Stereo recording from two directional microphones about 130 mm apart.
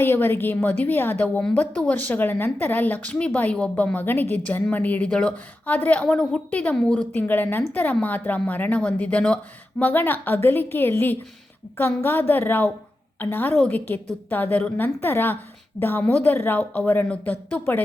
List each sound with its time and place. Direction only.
0.0 s a woman's voice: 15° left (ahead or behind)